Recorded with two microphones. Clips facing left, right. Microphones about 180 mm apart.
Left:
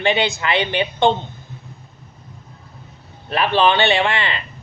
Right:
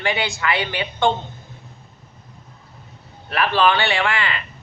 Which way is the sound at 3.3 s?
20° left (ahead or behind).